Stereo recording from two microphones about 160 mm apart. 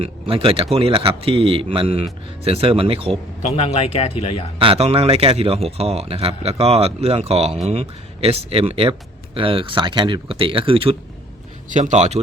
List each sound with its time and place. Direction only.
0.0 s speech: 35° right (ahead or behind)
3.5 s speech: 40° left (ahead or behind)
4.6 s speech: 35° right (ahead or behind)
11.7 s speech: 45° right (ahead or behind)